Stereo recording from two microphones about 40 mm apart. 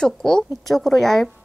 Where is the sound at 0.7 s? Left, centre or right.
Centre.